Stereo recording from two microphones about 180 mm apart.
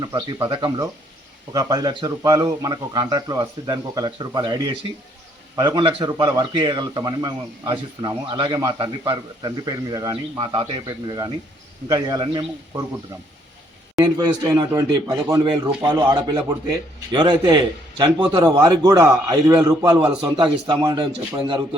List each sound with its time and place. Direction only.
0.0 s a man's voice: 20° right (ahead or behind)
14.0 s a man's voice: 25° right (ahead or behind)